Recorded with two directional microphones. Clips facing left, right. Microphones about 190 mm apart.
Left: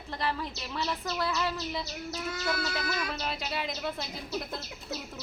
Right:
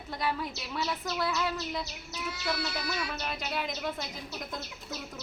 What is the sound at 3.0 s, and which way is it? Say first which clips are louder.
Speech: left 1 dB; centre (ahead or behind).